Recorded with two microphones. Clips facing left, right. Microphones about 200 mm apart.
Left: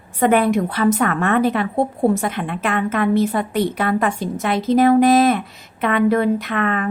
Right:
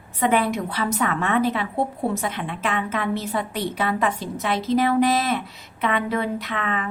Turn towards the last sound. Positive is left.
turn(degrees=50)  # may be behind; listen again after turning